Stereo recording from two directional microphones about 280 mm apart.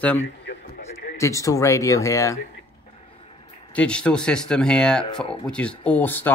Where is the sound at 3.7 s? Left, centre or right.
Centre.